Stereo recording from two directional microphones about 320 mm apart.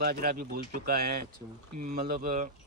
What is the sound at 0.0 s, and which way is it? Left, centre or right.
Speech, right.